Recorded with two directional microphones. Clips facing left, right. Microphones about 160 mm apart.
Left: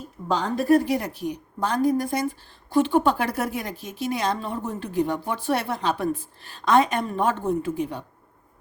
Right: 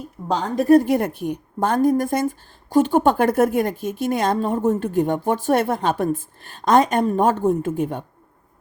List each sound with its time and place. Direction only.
0.3 s a woman's voice: 50° right (ahead or behind)